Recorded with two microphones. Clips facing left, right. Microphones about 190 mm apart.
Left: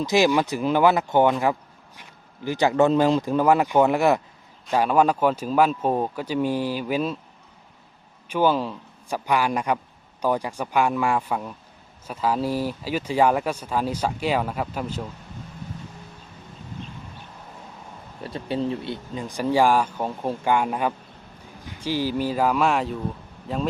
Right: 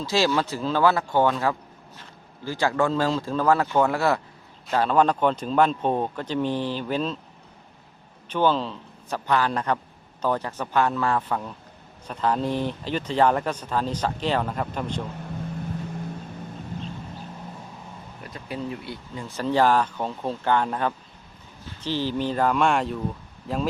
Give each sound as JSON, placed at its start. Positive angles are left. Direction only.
{"t": 0.0, "sound": "speech", "side_deg": 15}
{"t": 8.3, "sound": "speech", "side_deg": 10}
{"t": 18.2, "sound": "speech", "side_deg": 30}